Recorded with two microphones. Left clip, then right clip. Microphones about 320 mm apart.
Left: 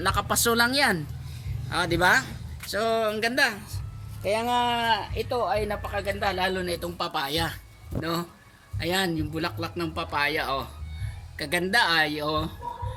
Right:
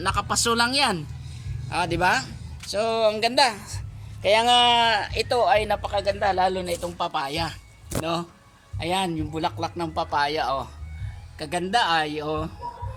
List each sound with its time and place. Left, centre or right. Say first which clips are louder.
0.0 s speech: right 1 dB; centre
4.3 s speech: right 7 dB; right
6.7 s speech: right 3 dB; centre